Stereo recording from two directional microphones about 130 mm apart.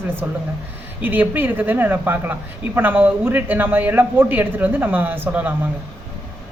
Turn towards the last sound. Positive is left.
turn(degrees=-15)  # may be behind; listen again after turning